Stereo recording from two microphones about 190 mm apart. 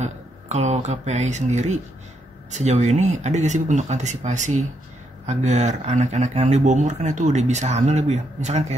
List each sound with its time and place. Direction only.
0.0 s speech: 35° right (ahead or behind)